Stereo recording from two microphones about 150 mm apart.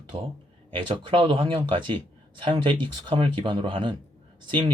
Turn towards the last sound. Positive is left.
turn(degrees=-30)  # may be behind; listen again after turning